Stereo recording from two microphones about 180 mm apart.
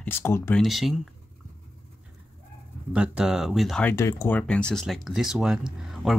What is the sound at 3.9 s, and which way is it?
Speech, 15° left (ahead or behind).